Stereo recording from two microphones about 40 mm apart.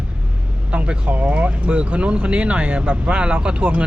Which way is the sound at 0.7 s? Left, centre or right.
Right.